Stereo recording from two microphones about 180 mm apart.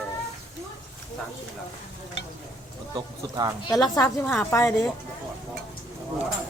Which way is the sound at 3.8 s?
20° left (ahead or behind).